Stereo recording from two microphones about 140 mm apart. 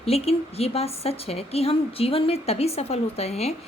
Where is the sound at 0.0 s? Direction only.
45° left (ahead or behind).